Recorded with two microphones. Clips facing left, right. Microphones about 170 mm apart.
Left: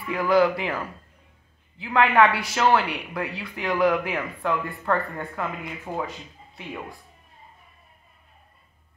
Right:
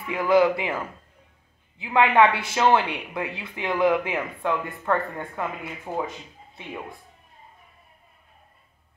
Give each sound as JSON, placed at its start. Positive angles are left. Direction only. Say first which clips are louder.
{"t": 0.0, "sound": "speech", "louder": "right 1 dB", "side_deg": -20}
{"t": 6.5, "sound": "speech", "louder": "even", "side_deg": -25}